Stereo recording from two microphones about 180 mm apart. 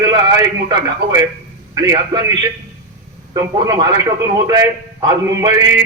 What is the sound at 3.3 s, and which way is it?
A man's voice, 20° right (ahead or behind).